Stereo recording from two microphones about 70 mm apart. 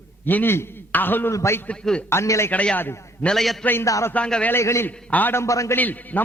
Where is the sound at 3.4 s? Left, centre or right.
Centre.